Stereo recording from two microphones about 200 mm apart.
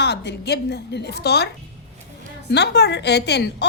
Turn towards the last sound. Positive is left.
turn(degrees=55)  # may be behind; listen again after turning